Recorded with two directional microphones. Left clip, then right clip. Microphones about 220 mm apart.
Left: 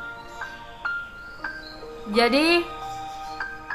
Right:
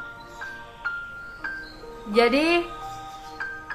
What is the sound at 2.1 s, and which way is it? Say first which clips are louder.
Speech: even; centre (ahead or behind).